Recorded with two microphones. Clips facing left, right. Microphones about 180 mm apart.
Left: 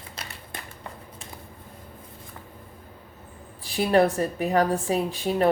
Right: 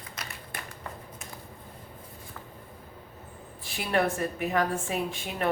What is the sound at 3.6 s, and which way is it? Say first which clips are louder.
A woman's voice: left 7 dB; 35° left (ahead or behind).